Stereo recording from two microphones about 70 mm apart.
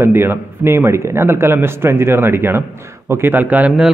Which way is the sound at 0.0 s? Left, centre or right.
Right.